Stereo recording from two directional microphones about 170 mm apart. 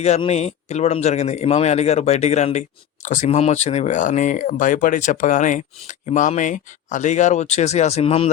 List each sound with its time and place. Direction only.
0.2 s a man's voice: 40° left (ahead or behind)